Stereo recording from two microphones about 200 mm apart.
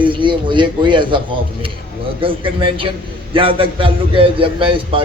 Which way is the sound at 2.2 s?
25° right (ahead or behind).